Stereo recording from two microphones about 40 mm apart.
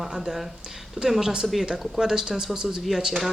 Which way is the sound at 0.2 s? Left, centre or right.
Centre.